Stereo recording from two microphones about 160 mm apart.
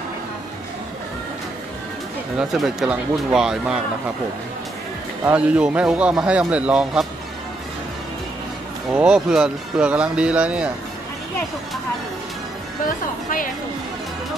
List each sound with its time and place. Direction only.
2.3 s speech: centre (ahead or behind)
5.2 s a man's voice: 10° right (ahead or behind)
8.9 s a man's voice: 5° right (ahead or behind)
12.8 s speech: 60° left (ahead or behind)